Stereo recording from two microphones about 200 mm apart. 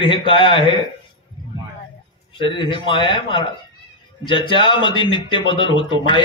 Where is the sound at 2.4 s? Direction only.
25° left (ahead or behind).